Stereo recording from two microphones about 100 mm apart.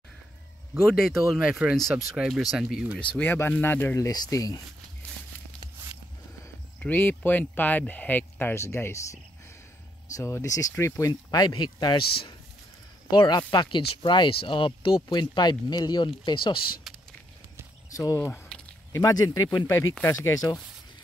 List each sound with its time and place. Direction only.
0.8 s speech: centre (ahead or behind)
3.0 s speech: 15° left (ahead or behind)
4.0 s speech: 40° left (ahead or behind)
6.8 s speech: 20° left (ahead or behind); by 16.6 s 50° left (ahead or behind)
16.9 s a sound: centre (ahead or behind)
17.9 s speech: 35° left (ahead or behind)
18.5 s a sound: 5° left (ahead or behind)
18.9 s speech: 35° left (ahead or behind)